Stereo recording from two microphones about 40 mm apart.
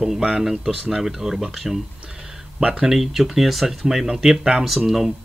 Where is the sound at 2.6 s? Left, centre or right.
Right.